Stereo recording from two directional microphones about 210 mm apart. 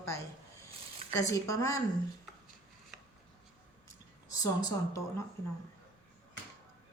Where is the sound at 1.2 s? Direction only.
15° left (ahead or behind).